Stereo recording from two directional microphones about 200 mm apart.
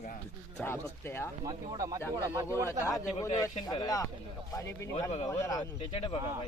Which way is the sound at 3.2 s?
15° left (ahead or behind).